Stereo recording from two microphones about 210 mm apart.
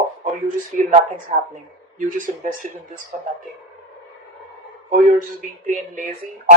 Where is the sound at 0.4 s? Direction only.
40° right (ahead or behind).